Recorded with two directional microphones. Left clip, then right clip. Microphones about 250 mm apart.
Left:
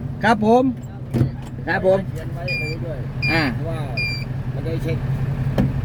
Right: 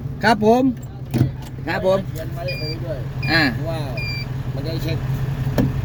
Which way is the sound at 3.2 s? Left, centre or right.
Right.